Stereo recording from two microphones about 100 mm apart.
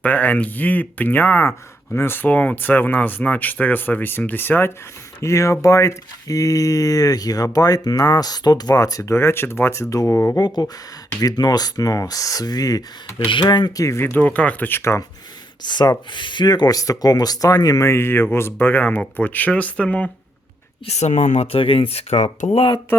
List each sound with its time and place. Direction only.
0.0 s speech: 15° left (ahead or behind)
10.3 s speech: 40° left (ahead or behind)
13.1 s speech: 55° left (ahead or behind)
13.8 s speech: 25° left (ahead or behind)
14.8 s speech: 30° left (ahead or behind)
15.6 s speech: 45° left (ahead or behind); by 20.1 s 10° left (ahead or behind)
20.8 s speech: 90° left